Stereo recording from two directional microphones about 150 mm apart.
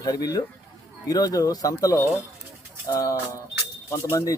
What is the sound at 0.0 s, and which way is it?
Speech, 25° left (ahead or behind).